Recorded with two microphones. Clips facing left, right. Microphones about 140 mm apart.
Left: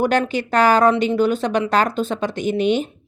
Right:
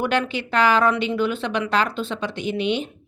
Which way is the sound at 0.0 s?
40° left (ahead or behind).